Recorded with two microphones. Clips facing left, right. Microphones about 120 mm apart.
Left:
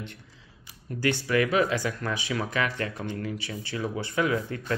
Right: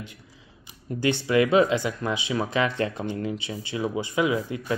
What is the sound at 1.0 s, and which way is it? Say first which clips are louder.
Speech: right 3 dB; 20° right (ahead or behind).